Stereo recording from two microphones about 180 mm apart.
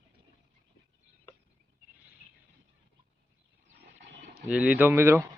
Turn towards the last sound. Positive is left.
turn(degrees=-15)  # may be behind; listen again after turning